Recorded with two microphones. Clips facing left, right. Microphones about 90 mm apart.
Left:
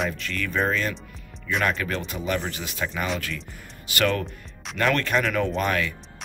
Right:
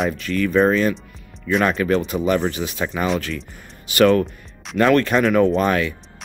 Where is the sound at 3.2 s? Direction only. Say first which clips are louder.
Right 5 dB; 35° right (ahead or behind).